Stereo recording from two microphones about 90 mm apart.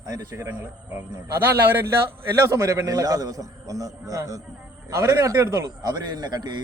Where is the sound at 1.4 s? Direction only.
25° right (ahead or behind).